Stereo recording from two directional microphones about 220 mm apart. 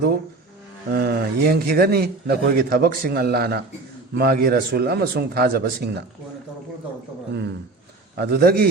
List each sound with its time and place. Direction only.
0.9 s a man's voice: 45° right (ahead or behind)
8.1 s a man's voice: 45° right (ahead or behind)